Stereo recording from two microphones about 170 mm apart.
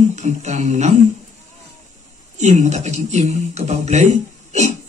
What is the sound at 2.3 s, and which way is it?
Speech, 45° right (ahead or behind).